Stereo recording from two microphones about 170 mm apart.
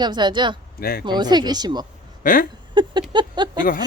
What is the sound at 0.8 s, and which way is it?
Speech, 60° left (ahead or behind).